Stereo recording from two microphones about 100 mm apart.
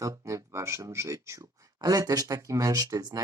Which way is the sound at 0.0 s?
35° right (ahead or behind).